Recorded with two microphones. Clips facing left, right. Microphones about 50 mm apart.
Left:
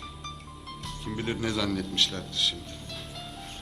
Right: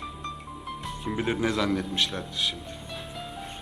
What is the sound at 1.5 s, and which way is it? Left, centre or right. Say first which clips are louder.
A man's voice: right 3 dB; centre.